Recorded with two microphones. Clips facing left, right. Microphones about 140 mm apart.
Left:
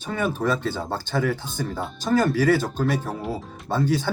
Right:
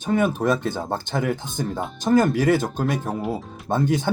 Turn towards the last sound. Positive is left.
turn(degrees=-20)  # may be behind; listen again after turning